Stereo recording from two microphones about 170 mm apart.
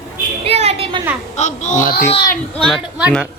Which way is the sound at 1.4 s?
45° left (ahead or behind).